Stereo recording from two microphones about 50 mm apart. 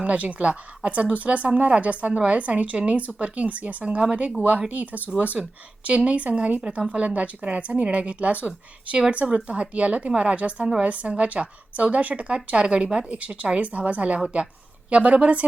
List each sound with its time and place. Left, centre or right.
0.0 s speech: right
13.1 s speech: right